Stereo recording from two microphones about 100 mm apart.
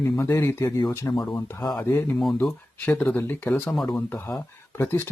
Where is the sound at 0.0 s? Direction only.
25° left (ahead or behind).